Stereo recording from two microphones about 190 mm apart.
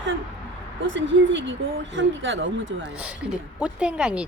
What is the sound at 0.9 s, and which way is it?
Speech, 75° right (ahead or behind).